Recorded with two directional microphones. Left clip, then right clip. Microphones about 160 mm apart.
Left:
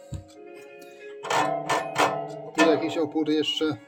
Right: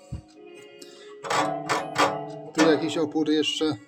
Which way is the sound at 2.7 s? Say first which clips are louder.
Even; 25° right (ahead or behind).